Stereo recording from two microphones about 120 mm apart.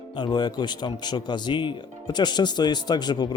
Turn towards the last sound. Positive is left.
turn(degrees=35)  # may be behind; listen again after turning